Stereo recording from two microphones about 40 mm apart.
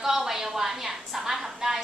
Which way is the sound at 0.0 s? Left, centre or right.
Centre.